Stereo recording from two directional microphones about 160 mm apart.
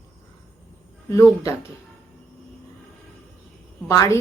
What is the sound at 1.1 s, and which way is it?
Speech, 20° left (ahead or behind).